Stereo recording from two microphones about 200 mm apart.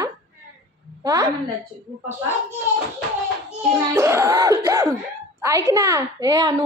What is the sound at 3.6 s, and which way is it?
A child's voice, 15° right (ahead or behind).